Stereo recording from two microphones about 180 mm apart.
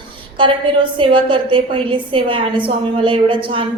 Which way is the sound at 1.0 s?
30° right (ahead or behind).